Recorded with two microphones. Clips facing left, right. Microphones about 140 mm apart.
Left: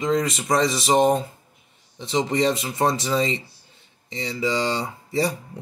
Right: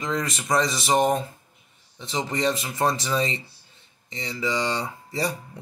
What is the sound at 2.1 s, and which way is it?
Speech, 25° left (ahead or behind).